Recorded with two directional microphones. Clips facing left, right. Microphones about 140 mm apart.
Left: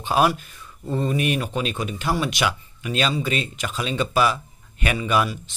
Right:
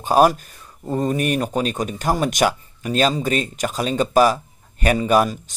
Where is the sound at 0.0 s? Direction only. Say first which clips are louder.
Right 5 dB; 40° right (ahead or behind).